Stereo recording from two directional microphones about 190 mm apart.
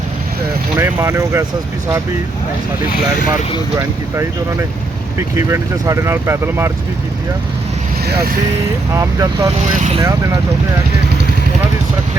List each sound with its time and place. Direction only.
0.8 s speech: 10° right (ahead or behind)
3.8 s speech: 15° right (ahead or behind)
5.4 s speech: 15° right (ahead or behind)
8.0 s speech: 55° right (ahead or behind)
9.0 s speech: 15° right (ahead or behind)
9.7 s speech: 40° right (ahead or behind)
10.0 s speech: 15° right (ahead or behind)